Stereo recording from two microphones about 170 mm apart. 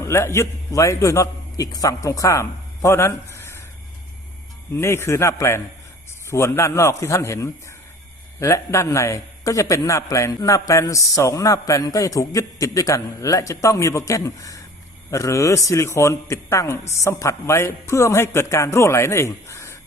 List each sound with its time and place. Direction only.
0.0 s a man's voice: 15° left (ahead or behind)
4.7 s a man's voice: 15° left (ahead or behind)